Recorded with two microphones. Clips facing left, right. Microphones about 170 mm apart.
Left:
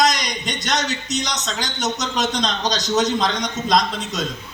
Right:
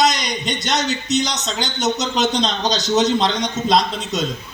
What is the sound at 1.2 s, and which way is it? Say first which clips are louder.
A man's voice: right 3 dB; 25° right (ahead or behind).